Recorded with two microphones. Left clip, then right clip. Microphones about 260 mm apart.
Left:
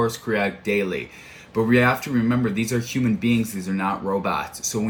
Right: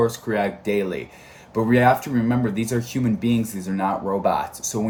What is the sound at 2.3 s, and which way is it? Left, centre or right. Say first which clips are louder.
Speech: even; centre.